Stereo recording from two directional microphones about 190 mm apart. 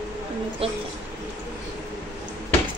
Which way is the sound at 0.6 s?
30° right (ahead or behind).